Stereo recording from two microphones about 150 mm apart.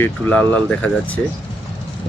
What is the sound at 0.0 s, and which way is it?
Speech, 10° left (ahead or behind).